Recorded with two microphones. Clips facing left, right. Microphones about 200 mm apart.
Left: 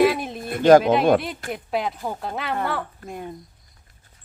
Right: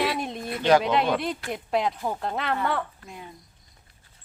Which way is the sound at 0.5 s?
45° left (ahead or behind).